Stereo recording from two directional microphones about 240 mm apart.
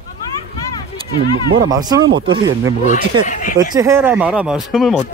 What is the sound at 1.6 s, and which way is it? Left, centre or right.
Speech, centre.